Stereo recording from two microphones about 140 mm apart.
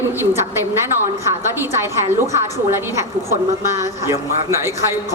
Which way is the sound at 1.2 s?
20° right (ahead or behind).